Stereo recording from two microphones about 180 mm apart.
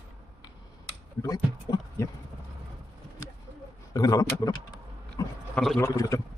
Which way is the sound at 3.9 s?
20° left (ahead or behind).